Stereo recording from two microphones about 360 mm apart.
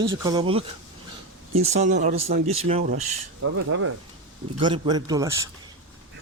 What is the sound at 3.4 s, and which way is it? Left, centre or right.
Speech, right.